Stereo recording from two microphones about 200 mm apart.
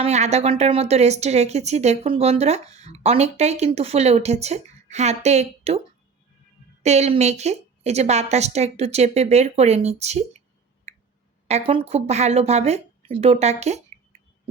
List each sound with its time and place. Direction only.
0.0 s a woman's voice: 35° right (ahead or behind)
6.8 s a woman's voice: 35° right (ahead or behind)
11.4 s a woman's voice: 30° right (ahead or behind)